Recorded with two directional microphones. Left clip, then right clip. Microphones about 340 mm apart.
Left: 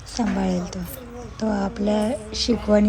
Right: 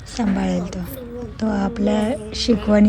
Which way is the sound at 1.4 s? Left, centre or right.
Right.